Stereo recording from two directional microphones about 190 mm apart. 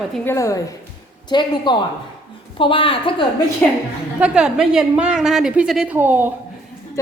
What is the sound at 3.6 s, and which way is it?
Speech, 5° left (ahead or behind).